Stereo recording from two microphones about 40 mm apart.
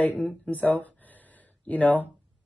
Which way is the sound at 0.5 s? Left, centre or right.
Left.